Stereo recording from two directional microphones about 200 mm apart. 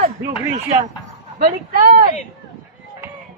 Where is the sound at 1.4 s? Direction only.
45° right (ahead or behind).